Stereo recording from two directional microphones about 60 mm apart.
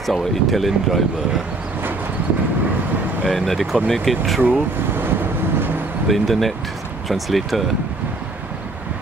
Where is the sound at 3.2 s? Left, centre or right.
Centre.